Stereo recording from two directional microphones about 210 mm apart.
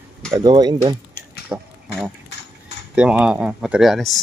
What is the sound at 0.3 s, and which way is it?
Speech, 20° right (ahead or behind).